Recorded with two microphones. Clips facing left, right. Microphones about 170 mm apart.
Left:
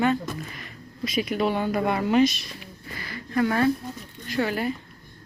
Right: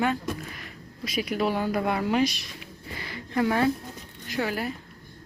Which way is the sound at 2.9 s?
20° right (ahead or behind).